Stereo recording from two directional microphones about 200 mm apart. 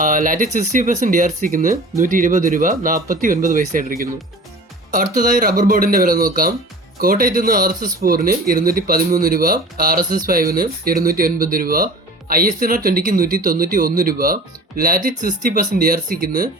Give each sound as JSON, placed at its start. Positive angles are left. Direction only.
{"t": 0.0, "sound": "speech", "side_deg": -45}